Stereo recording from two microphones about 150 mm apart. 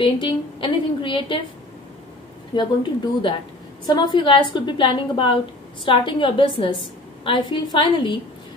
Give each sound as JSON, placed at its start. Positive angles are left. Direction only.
{"t": 0.0, "sound": "a woman's voice", "side_deg": 35}
{"t": 2.5, "sound": "a woman's voice", "side_deg": 30}